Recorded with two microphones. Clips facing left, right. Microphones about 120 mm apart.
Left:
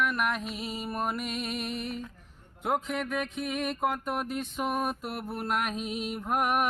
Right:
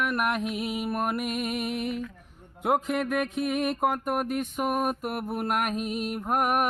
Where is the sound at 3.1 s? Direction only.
55° right (ahead or behind).